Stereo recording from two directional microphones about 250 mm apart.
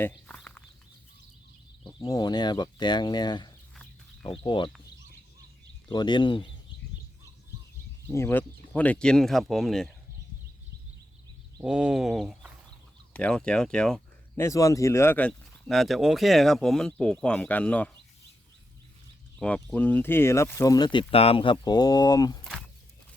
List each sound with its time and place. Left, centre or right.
0.0 s a sound: centre
1.9 s speech: centre
5.9 s speech: centre
8.0 s speech: centre
11.5 s a sound: centre
13.1 s speech: centre
19.4 s speech: centre